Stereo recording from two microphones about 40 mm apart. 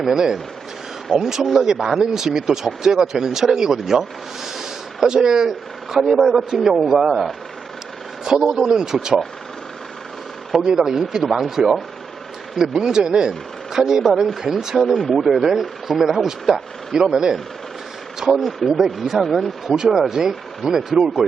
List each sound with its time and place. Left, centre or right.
0.0 s speech: centre
4.5 s a sound: centre
5.1 s speech: centre
8.2 s speech: centre
10.8 s speech: centre
18.2 s speech: centre